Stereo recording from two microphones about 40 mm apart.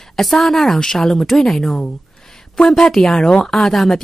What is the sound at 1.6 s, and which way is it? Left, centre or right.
Speech, centre.